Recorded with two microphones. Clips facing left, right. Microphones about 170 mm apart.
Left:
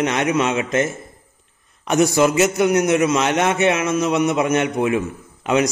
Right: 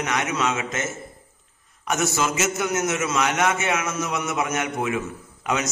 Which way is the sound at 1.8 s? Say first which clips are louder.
Left 8 dB; 20° left (ahead or behind).